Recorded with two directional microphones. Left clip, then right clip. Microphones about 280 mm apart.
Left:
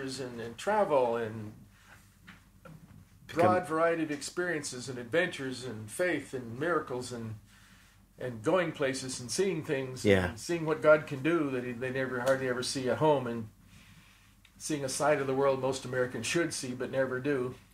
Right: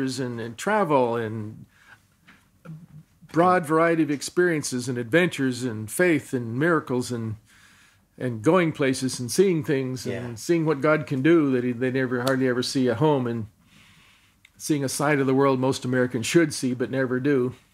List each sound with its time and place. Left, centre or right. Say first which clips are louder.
0.0 s speech: right 9 dB; right
3.5 s speech: right 8 dB; right
8.2 s speech: right 8 dB; right
14.6 s speech: right 6 dB; right